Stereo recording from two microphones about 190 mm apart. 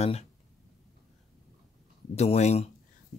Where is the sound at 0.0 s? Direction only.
30° left (ahead or behind).